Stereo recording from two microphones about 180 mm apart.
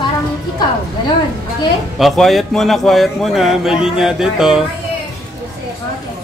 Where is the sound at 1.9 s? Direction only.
Centre (ahead or behind).